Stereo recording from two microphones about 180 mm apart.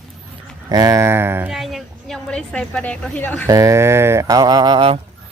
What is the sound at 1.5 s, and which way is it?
A woman's voice, centre (ahead or behind).